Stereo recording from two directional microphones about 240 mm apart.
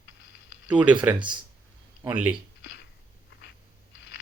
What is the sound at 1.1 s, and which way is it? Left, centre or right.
Speech, centre.